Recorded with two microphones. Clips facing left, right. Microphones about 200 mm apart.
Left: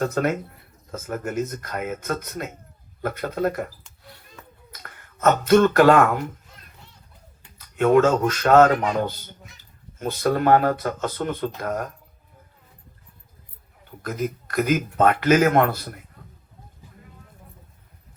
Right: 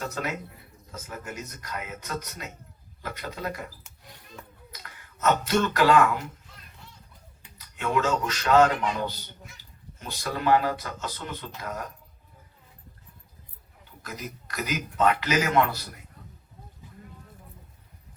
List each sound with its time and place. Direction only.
0.0 s speech: 50° left (ahead or behind)
4.7 s speech: 50° left (ahead or behind)
7.8 s speech: 50° left (ahead or behind)
14.0 s speech: 50° left (ahead or behind)